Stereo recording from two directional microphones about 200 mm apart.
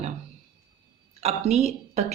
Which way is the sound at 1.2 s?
35° right (ahead or behind).